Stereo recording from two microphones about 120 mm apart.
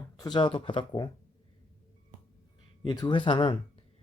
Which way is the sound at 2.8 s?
40° left (ahead or behind).